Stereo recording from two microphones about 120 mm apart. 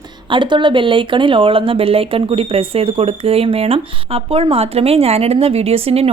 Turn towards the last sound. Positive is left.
turn(degrees=-55)  # may be behind; listen again after turning